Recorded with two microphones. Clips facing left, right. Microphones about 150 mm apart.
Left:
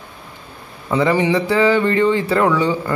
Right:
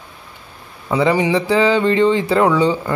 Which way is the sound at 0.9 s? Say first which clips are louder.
Even; 15° right (ahead or behind).